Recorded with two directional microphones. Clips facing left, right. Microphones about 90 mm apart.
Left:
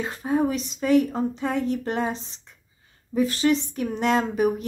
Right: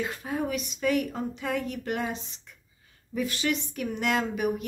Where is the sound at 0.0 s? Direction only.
35° left (ahead or behind).